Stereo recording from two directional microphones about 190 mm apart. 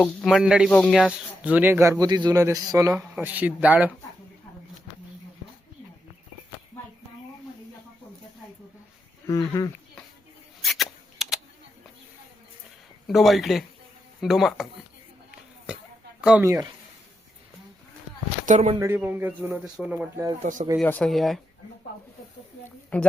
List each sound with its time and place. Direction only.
0.0 s speech: centre (ahead or behind)
9.2 s speech: 15° left (ahead or behind)
10.6 s a sound: centre (ahead or behind)
13.1 s speech: centre (ahead or behind)
16.2 s speech: 10° right (ahead or behind)
18.4 s speech: 35° right (ahead or behind)
18.8 s speech: 10° right (ahead or behind)
20.4 s speech: 40° right (ahead or behind)
20.8 s speech: 5° left (ahead or behind)
22.9 s speech: 10° left (ahead or behind)